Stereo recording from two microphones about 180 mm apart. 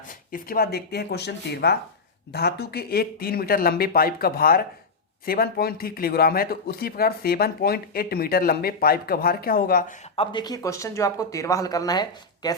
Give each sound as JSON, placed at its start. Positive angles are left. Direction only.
{"t": 0.1, "sound": "speech", "side_deg": 50}
{"t": 10.2, "sound": "speech", "side_deg": 25}